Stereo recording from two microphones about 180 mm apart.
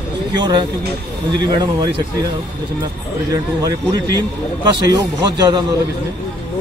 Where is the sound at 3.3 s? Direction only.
20° right (ahead or behind).